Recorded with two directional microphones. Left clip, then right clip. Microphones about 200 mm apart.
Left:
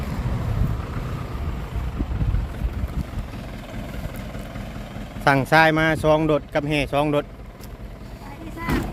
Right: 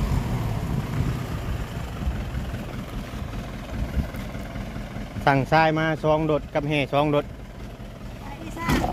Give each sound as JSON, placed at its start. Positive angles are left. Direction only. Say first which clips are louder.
{"t": 0.0, "sound": "vehicle", "louder": "right 1 dB", "side_deg": -60}
{"t": 5.2, "sound": "speech", "louder": "left 3 dB", "side_deg": 15}
{"t": 8.5, "sound": "vehicle", "louder": "right 1 dB", "side_deg": -50}